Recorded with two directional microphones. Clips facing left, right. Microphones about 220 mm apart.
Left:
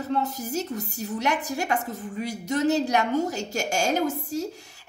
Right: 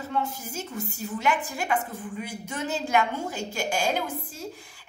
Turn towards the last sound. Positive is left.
turn(degrees=45)  # may be behind; listen again after turning